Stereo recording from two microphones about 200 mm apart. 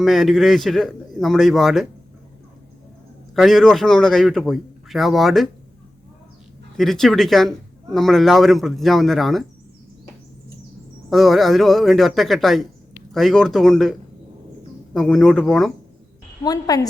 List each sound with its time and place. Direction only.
0.0 s a man's voice: centre (ahead or behind)
3.3 s a man's voice: centre (ahead or behind)
6.7 s a man's voice: centre (ahead or behind)
11.1 s a man's voice: centre (ahead or behind)
14.9 s a man's voice: centre (ahead or behind)
16.4 s a woman's voice: 20° left (ahead or behind)